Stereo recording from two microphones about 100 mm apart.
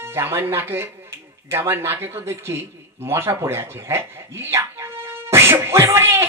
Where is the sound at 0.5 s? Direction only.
25° right (ahead or behind).